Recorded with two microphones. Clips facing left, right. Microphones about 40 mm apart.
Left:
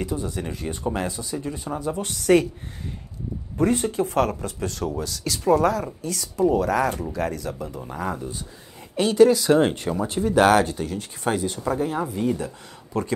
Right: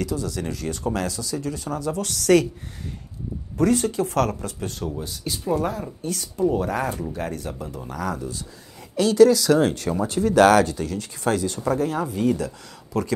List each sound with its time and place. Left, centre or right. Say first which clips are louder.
0.0 s speech: right 1 dB; left
2.0 s speech: even; right
3.5 s speech: right 1 dB; left
4.6 s speech: left 2 dB; left
5.0 s speech: left 2 dB; left
5.5 s speech: left 6 dB; left
7.9 s speech: right 1 dB; left
10.0 s speech: right 2 dB; centre